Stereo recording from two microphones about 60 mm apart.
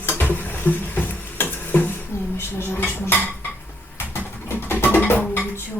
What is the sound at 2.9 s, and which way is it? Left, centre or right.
Speech, left.